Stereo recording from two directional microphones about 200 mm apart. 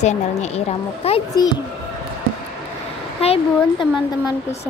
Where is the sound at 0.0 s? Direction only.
35° left (ahead or behind).